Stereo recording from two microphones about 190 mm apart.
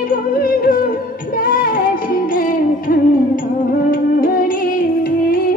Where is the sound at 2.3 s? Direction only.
45° left (ahead or behind).